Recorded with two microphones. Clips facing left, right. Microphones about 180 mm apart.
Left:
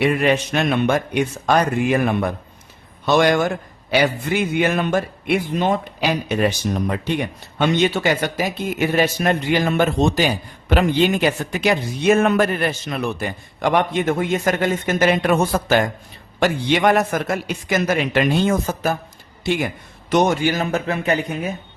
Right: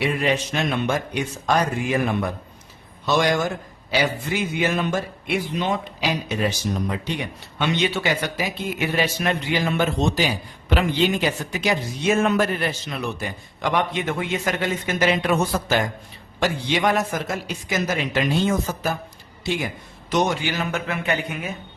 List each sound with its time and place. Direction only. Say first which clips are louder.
0.0 s a man's voice: left 5 dB; 60° left (ahead or behind)
20.1 s a man's voice: left 5 dB; 50° left (ahead or behind)